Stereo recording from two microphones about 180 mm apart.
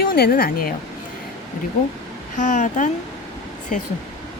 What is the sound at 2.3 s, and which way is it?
Speech, 45° left (ahead or behind).